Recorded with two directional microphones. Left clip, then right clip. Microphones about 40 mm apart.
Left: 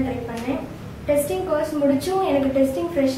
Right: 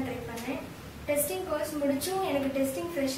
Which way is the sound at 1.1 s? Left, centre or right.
Right.